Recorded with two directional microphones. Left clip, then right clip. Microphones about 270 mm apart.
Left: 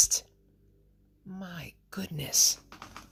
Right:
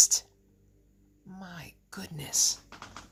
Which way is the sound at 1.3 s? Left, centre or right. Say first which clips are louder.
Left 2 dB; left.